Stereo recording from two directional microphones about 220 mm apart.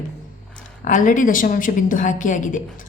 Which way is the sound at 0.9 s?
35° left (ahead or behind).